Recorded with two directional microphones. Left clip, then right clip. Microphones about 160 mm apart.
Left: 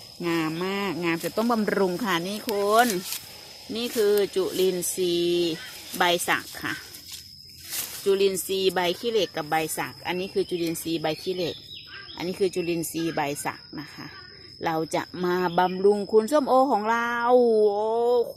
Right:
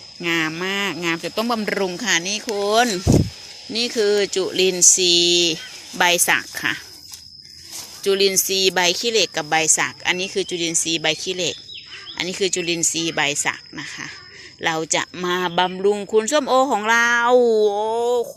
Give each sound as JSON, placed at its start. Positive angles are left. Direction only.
{"t": 0.2, "sound": "speech", "side_deg": -5}
{"t": 2.6, "sound": "speech", "side_deg": -20}
{"t": 6.0, "sound": "speech", "side_deg": -25}
{"t": 8.0, "sound": "speech", "side_deg": -15}
{"t": 16.6, "sound": "speech", "side_deg": -5}